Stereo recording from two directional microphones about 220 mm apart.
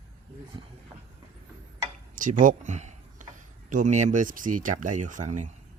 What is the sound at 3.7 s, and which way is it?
Speech, 35° right (ahead or behind).